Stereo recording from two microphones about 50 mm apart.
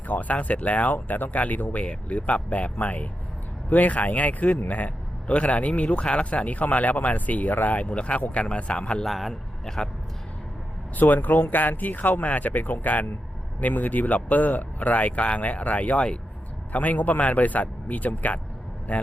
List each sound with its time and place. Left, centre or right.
0.1 s speech: left
9.0 s speech: centre
9.3 s speech: centre
10.9 s speech: left